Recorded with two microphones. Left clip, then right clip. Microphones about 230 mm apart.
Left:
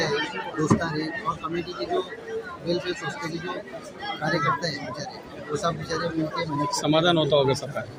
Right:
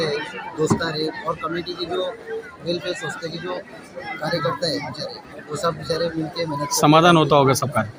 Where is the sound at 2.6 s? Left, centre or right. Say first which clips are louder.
Right 2 dB; centre.